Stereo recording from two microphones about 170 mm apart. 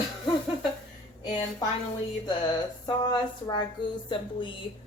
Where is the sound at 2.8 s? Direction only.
25° left (ahead or behind).